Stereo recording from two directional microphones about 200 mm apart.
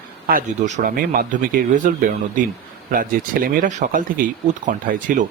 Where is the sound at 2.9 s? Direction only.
45° right (ahead or behind).